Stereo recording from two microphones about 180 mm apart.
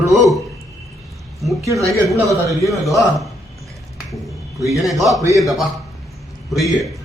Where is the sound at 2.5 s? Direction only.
Centre (ahead or behind).